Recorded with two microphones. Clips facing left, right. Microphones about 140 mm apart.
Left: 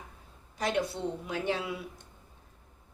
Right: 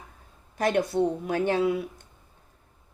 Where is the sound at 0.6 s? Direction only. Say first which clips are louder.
Right 7 dB; 55° right (ahead or behind).